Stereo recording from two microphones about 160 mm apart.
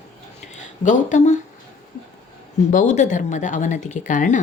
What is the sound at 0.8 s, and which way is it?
Speech, 50° left (ahead or behind).